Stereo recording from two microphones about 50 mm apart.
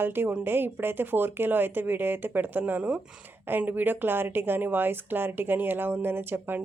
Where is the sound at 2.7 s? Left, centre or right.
Right.